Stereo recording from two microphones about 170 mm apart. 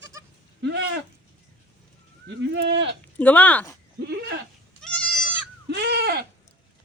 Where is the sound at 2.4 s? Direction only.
90° right.